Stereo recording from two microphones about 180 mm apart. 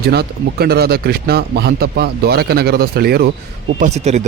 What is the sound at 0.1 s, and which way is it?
Speech, 65° right (ahead or behind).